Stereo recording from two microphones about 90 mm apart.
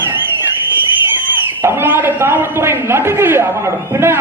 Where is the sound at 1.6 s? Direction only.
25° right (ahead or behind).